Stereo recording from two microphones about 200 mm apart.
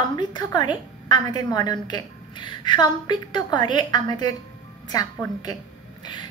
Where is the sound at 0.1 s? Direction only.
20° left (ahead or behind).